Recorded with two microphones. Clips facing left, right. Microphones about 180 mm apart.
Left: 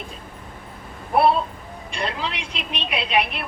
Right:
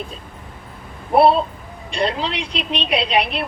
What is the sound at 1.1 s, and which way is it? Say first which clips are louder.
A woman's voice: right 4 dB; 30° right (ahead or behind).